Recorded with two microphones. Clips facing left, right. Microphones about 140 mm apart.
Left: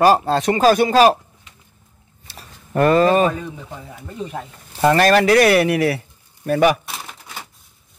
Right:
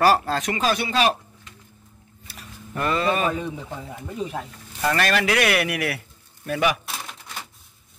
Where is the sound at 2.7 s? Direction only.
45° left (ahead or behind).